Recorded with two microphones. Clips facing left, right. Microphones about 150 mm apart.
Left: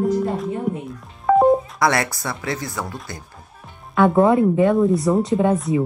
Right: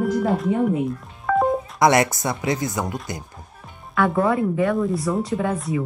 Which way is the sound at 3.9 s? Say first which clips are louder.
Left 5 dB; 25° left (ahead or behind).